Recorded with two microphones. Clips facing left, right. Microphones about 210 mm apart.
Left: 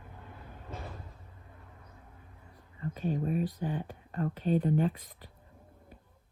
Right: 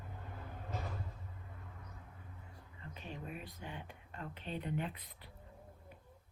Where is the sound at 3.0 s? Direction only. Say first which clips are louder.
Left 15 dB; 45° left (ahead or behind).